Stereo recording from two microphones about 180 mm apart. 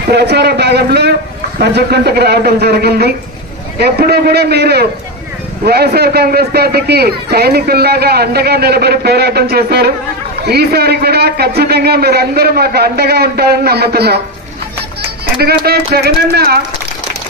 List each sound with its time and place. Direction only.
0.1 s a sound: 65° right (ahead or behind)
1.6 s a man's voice: 65° right (ahead or behind)
15.3 s a man's voice: 60° right (ahead or behind)